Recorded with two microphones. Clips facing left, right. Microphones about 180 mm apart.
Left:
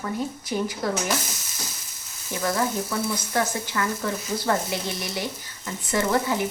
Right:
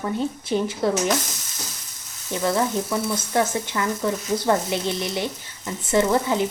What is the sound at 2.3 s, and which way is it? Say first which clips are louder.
Speech: right 3 dB; 20° right (ahead or behind).